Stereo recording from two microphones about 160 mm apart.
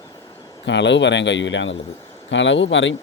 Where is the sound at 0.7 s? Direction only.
90° left.